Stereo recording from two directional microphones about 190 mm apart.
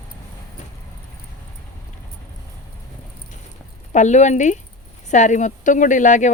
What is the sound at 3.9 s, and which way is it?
Speech, 40° left (ahead or behind).